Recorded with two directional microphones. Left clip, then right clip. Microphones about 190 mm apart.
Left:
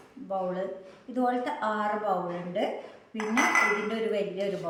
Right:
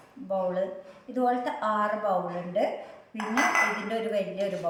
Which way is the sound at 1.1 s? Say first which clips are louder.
Right 1 dB; 10° right (ahead or behind).